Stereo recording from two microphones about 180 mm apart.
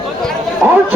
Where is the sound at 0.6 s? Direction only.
10° right (ahead or behind).